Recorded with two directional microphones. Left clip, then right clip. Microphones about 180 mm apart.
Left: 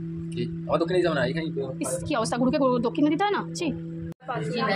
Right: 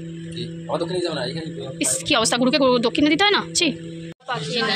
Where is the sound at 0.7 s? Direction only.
20° left (ahead or behind).